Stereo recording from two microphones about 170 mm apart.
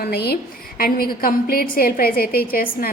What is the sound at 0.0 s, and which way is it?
A woman's voice, 65° left (ahead or behind).